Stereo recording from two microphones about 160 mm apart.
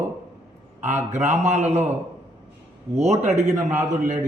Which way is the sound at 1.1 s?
45° right (ahead or behind).